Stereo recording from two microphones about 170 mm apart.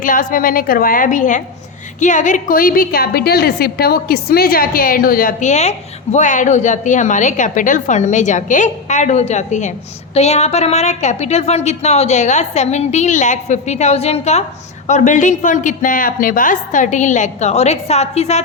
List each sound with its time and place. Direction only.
0.0 s a woman's voice: 50° left (ahead or behind)